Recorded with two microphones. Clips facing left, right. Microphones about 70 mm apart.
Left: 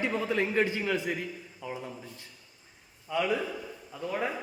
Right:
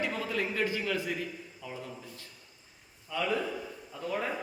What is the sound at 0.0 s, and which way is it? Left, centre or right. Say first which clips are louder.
A man's voice: left 4 dB; left.